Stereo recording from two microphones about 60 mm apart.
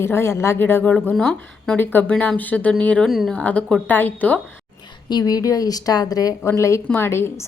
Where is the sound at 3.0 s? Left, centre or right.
Centre.